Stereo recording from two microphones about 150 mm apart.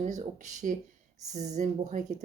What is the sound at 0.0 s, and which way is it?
Speech, 50° right (ahead or behind).